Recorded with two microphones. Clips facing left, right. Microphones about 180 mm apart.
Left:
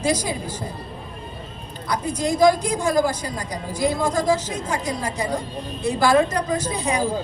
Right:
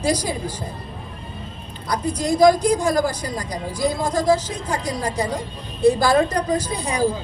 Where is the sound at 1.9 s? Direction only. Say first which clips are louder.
Right 1 dB; 35° right (ahead or behind).